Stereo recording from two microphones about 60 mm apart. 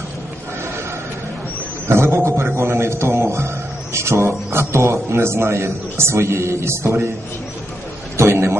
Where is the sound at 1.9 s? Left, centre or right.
Right.